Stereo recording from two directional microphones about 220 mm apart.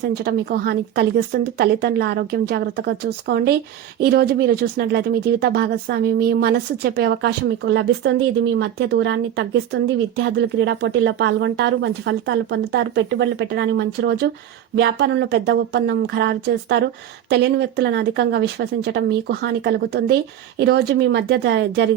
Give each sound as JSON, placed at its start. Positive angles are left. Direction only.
{"t": 0.0, "sound": "speech", "side_deg": -45}